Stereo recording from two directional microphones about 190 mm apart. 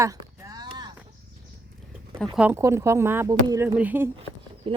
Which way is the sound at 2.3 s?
10° right (ahead or behind).